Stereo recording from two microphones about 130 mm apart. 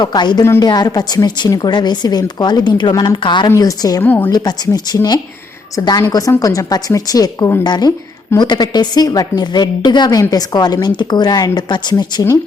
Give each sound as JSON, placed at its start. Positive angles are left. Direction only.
{"t": 0.0, "sound": "a woman's voice", "side_deg": 35}
{"t": 4.0, "sound": "a woman's voice", "side_deg": 15}
{"t": 4.3, "sound": "a woman's voice", "side_deg": 30}